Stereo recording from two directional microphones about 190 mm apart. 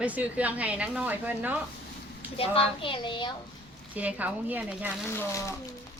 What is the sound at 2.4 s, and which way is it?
Speech, 30° left (ahead or behind).